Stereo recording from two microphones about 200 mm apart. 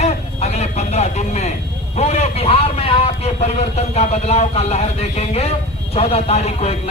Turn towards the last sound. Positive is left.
turn(degrees=30)  # may be behind; listen again after turning